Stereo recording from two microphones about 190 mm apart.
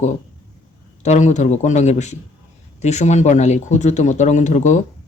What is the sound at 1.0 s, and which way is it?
Speech, 40° left (ahead or behind).